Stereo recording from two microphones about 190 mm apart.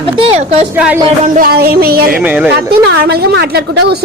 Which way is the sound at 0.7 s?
10° right (ahead or behind).